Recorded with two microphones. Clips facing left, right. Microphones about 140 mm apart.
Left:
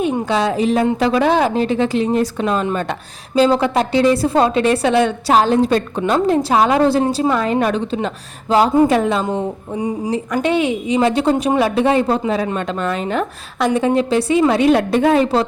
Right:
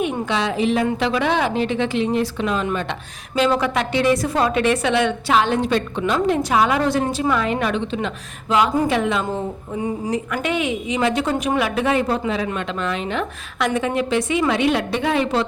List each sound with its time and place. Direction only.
0.0 s a woman's voice: 40° left (ahead or behind)
9.7 s speech: 15° left (ahead or behind)
10.1 s a woman's voice: 30° left (ahead or behind)